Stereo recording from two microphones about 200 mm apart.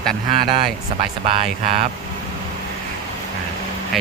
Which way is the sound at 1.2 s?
30° right (ahead or behind).